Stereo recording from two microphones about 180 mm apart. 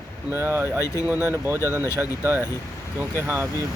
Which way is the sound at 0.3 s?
10° right (ahead or behind).